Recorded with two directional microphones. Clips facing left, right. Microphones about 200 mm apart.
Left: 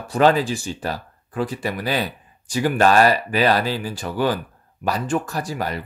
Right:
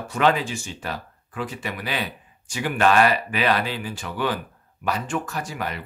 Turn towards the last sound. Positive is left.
turn(degrees=35)  # may be behind; listen again after turning